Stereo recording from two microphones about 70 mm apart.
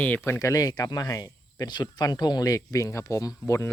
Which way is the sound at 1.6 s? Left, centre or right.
Left.